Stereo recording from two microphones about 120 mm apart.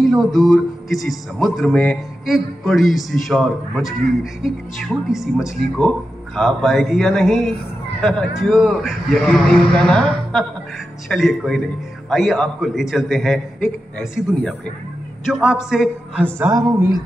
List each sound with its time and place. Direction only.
0.0 s music: centre (ahead or behind)
15.2 s music: 5° right (ahead or behind)
16.3 s a sound: 25° right (ahead or behind)